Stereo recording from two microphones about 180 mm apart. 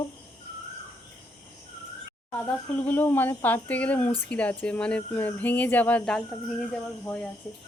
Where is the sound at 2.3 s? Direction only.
10° left (ahead or behind).